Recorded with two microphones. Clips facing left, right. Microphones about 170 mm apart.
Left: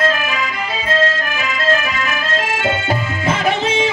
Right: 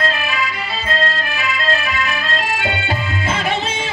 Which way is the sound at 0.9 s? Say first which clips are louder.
Left 4 dB; 45° left (ahead or behind).